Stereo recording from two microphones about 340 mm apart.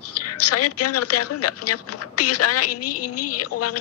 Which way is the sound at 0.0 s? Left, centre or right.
Left.